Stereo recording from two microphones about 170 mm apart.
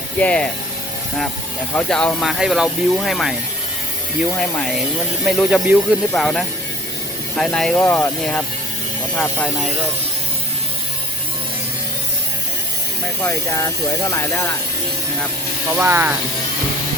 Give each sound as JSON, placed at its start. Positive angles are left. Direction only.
{"t": 0.2, "sound": "speech", "side_deg": 5}
{"t": 1.7, "sound": "speech", "side_deg": 5}
{"t": 4.4, "sound": "speech", "side_deg": 0}
{"t": 13.2, "sound": "speech", "side_deg": 20}
{"t": 15.8, "sound": "speech", "side_deg": -15}